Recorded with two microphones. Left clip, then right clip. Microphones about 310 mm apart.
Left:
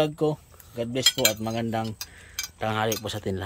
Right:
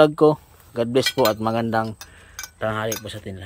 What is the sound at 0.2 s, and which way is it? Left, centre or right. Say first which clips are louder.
Speech: right 10 dB; centre.